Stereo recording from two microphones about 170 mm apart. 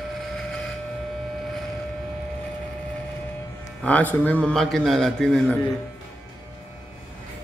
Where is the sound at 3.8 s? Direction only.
10° left (ahead or behind).